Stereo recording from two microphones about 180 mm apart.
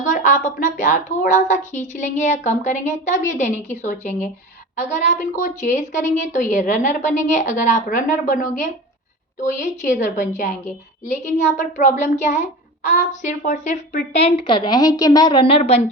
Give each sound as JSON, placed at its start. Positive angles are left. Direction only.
{"t": 0.0, "sound": "a woman's voice", "side_deg": 45}